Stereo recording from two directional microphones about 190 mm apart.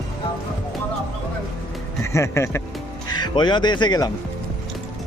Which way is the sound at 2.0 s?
15° left (ahead or behind).